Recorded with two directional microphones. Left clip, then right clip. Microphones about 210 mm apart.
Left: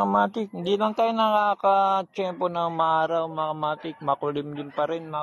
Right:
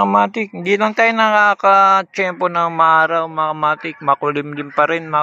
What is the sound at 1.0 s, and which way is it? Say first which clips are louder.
Speech: right 10 dB; 40° right (ahead or behind).